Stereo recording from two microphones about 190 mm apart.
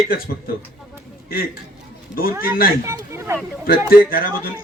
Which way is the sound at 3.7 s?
50° left (ahead or behind).